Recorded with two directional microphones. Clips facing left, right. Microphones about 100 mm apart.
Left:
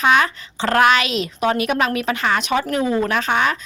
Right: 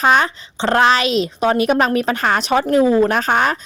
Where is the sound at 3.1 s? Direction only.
40° right (ahead or behind).